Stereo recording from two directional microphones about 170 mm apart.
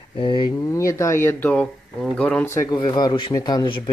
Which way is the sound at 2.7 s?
25° left (ahead or behind).